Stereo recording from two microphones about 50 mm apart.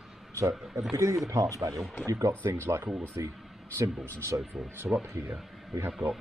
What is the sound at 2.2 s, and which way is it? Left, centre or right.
Speech, right.